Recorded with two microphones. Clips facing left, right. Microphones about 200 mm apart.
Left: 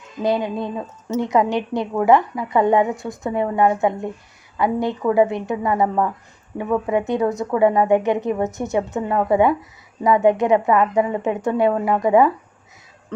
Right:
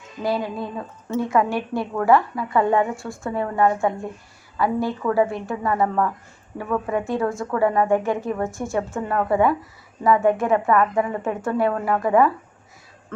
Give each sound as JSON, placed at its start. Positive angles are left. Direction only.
{"t": 0.2, "sound": "a woman's voice", "side_deg": 20}